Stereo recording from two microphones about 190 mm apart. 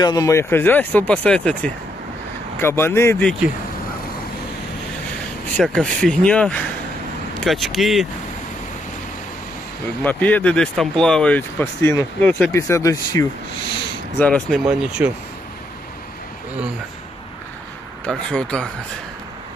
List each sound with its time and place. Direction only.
0.0 s speech: 20° left (ahead or behind)
5.5 s speech: 5° left (ahead or behind)
10.0 s speech: 10° left (ahead or behind)
14.7 s speech: 5° right (ahead or behind)
18.0 s speech: 5° left (ahead or behind)